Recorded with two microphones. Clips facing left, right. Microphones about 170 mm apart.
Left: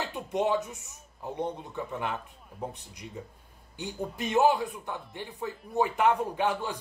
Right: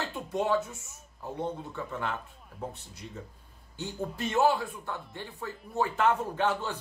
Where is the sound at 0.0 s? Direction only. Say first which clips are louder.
Left 2 dB; 20° left (ahead or behind).